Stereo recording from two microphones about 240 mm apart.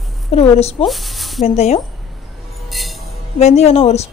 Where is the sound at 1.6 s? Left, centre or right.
Left.